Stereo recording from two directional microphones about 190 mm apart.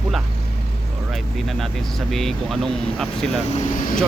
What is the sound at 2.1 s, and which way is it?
Speech, centre (ahead or behind).